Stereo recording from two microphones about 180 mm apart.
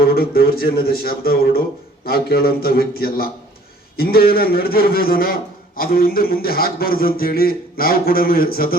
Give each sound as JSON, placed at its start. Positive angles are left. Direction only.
{"t": 0.0, "sound": "a man's voice", "side_deg": 55}